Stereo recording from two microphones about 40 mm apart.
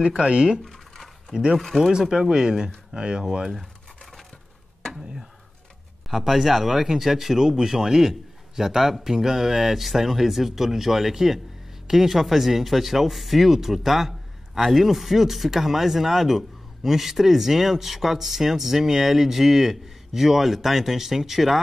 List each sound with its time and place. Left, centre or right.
0.2 s speech: right
0.7 s a sound: centre
1.3 s speech: centre
1.6 s speech: centre
2.0 s speech: centre
4.0 s a sound: centre
6.0 s speech: centre